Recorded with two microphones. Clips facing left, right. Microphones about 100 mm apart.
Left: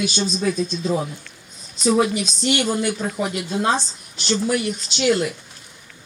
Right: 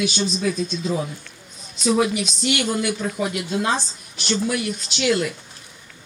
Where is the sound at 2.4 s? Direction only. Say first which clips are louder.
Left 2 dB; 35° left (ahead or behind).